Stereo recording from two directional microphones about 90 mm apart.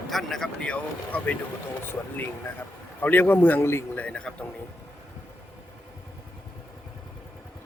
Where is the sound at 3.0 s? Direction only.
20° left (ahead or behind).